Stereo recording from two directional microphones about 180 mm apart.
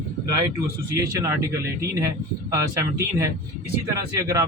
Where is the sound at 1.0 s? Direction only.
15° right (ahead or behind).